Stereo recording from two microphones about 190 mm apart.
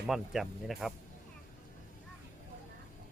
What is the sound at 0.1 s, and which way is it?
Speech, centre (ahead or behind).